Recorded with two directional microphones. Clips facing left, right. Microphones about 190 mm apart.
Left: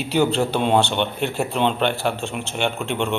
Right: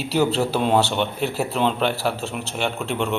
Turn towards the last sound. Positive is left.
turn(degrees=0)  # may be behind; listen again after turning